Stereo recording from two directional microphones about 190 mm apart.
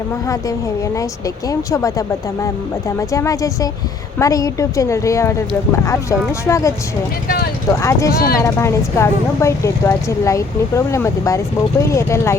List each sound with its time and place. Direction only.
1.5 s a woman's voice: 15° left (ahead or behind)
7.3 s speech: 55° left (ahead or behind)
7.7 s a woman's voice: 15° left (ahead or behind)
8.1 s speech: 50° left (ahead or behind)
8.4 s a woman's voice: 15° left (ahead or behind)